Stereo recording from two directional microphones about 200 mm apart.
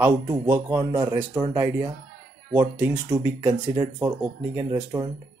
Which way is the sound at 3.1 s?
15° right (ahead or behind).